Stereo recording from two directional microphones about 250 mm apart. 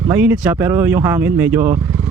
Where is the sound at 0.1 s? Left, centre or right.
Centre.